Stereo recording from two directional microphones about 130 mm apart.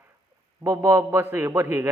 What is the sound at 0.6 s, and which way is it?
A man's voice, 25° right (ahead or behind).